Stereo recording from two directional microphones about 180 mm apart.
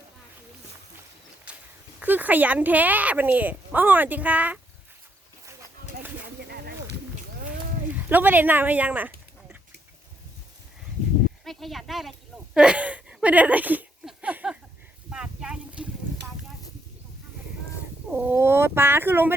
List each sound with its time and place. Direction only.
2.0 s a woman's voice: 10° right (ahead or behind)
6.4 s a sound: 65° right (ahead or behind)
8.1 s a woman's voice: 10° right (ahead or behind)
11.4 s speech: centre (ahead or behind)
12.5 s a sound: 5° right (ahead or behind)
18.1 s a woman's voice: 10° right (ahead or behind)